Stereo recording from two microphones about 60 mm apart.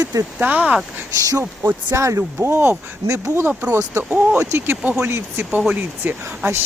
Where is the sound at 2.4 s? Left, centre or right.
Right.